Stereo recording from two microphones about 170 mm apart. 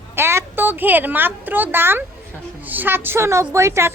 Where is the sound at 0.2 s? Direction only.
15° right (ahead or behind).